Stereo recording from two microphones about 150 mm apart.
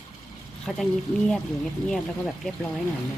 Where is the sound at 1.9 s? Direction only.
Centre (ahead or behind).